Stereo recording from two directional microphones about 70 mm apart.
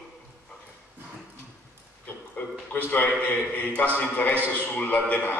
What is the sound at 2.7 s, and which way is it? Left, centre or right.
A man's voice, left.